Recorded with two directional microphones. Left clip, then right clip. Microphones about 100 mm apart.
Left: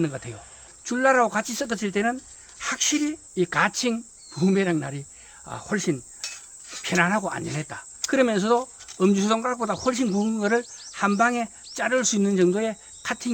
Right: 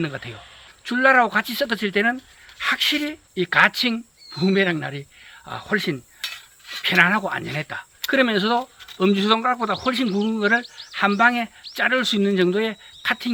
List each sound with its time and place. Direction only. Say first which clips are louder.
0.0 s speech: even; 35° left (ahead or behind)
6.3 s a sound: right 6 dB; 10° left (ahead or behind)
7.0 s speech: right 4 dB; 40° left (ahead or behind)